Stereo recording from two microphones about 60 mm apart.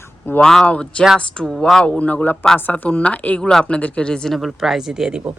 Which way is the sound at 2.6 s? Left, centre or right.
Left.